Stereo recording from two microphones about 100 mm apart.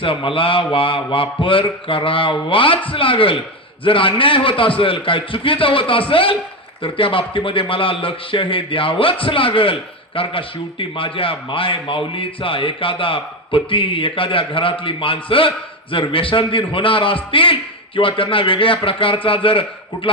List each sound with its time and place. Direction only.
0.0 s a man's voice: 60° left (ahead or behind)